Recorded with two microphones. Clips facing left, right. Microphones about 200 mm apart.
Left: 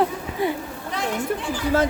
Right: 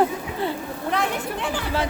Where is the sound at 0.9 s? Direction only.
60° right (ahead or behind).